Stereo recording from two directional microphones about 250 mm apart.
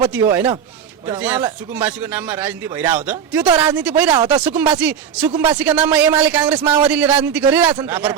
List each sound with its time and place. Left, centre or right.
0.1 s speech: centre
4.2 s speech: centre
4.4 s speech: centre
6.6 s a man's voice: centre
6.8 s speech: centre